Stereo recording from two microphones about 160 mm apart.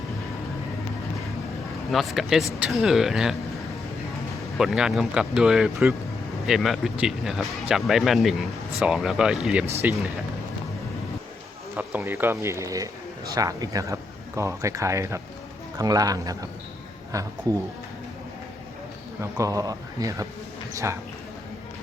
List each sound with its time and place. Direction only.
1.9 s speech: centre (ahead or behind)
4.5 s speech: centre (ahead or behind)
11.8 s speech: 10° right (ahead or behind)
19.2 s speech: 20° right (ahead or behind)